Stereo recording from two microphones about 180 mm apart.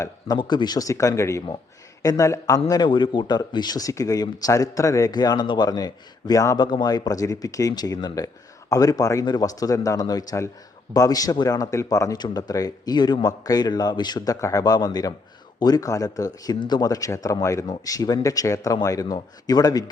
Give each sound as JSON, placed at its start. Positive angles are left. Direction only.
{"t": 0.0, "sound": "speech", "side_deg": 20}